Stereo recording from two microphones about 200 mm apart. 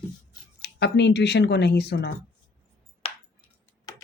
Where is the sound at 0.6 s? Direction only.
55° left (ahead or behind).